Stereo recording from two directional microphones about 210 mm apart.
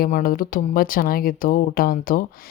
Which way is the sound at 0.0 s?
45° left (ahead or behind).